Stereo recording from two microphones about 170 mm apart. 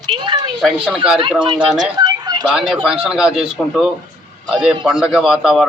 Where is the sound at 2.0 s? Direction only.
25° right (ahead or behind).